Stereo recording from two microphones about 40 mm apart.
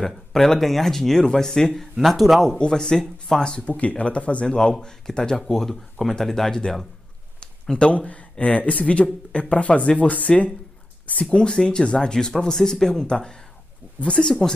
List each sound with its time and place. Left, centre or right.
0.0 s speech: centre
1.7 s speech: centre
2.5 s speech: centre
3.6 s speech: left
4.5 s speech: centre
7.7 s speech: left
11.2 s speech: left